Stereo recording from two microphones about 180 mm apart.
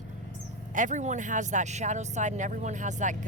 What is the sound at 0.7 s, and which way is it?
Speech, 45° right (ahead or behind).